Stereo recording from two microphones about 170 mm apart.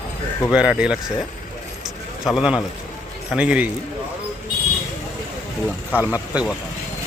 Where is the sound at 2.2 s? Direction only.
5° right (ahead or behind).